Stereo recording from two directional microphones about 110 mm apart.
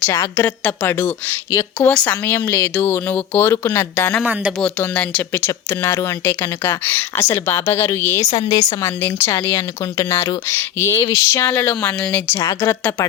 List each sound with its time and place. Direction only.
0.0 s speech: 25° left (ahead or behind)
4.2 s speech: 10° right (ahead or behind)
4.6 s speech: 10° left (ahead or behind)
8.3 s speech: 35° left (ahead or behind)
9.0 s speech: 20° left (ahead or behind)
12.3 s speech: 25° left (ahead or behind)